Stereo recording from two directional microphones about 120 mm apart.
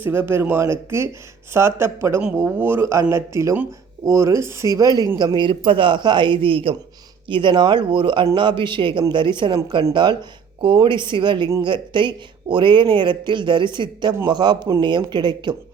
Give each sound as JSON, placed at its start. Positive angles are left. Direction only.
{"t": 0.0, "sound": "speech", "side_deg": -20}